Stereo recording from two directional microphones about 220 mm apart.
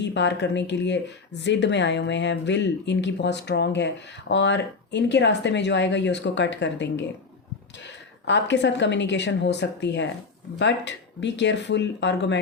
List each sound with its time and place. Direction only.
0.0 s speech: 55° left (ahead or behind)
8.2 s speech: 55° left (ahead or behind)